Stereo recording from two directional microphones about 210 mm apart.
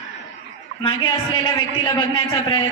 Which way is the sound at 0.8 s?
20° left (ahead or behind).